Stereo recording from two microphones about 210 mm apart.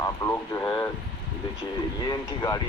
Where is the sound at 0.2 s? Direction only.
15° left (ahead or behind).